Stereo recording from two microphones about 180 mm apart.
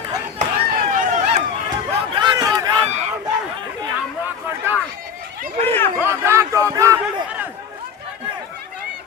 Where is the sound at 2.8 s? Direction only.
40° right (ahead or behind).